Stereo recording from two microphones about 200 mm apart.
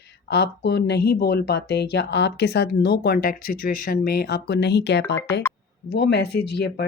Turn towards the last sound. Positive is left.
turn(degrees=55)  # may be behind; listen again after turning